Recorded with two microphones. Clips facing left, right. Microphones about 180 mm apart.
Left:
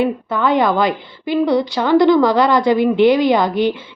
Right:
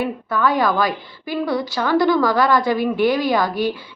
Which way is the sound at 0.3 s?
20° left (ahead or behind).